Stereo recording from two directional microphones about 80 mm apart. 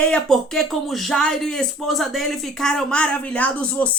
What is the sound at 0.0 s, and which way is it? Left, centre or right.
Speech, centre.